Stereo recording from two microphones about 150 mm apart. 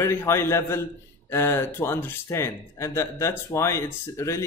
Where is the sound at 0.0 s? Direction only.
15° left (ahead or behind).